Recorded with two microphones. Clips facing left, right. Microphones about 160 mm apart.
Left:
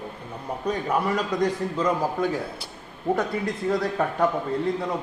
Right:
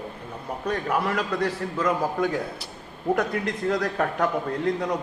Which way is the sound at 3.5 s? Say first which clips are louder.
Even; 5° left (ahead or behind).